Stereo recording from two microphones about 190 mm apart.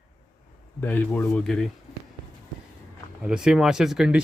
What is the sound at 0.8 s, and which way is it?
Speech, 10° left (ahead or behind).